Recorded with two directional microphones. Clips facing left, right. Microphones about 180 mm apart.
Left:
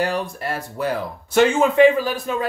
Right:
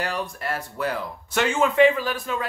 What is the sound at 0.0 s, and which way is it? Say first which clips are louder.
Speech: left 5 dB; 35° left (ahead or behind).